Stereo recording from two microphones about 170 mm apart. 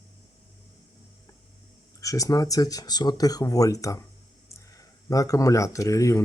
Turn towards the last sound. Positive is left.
turn(degrees=20)  # may be behind; listen again after turning